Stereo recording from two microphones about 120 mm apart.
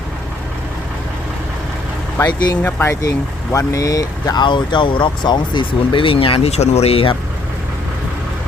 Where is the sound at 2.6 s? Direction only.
15° left (ahead or behind); by 7.2 s 50° left (ahead or behind).